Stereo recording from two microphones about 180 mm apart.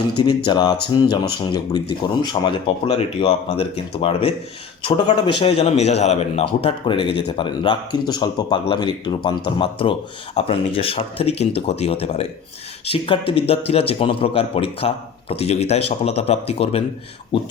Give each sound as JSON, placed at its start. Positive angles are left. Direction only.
{"t": 0.2, "sound": "speech", "side_deg": 25}